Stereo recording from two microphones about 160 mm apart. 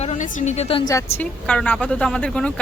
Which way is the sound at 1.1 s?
10° left (ahead or behind).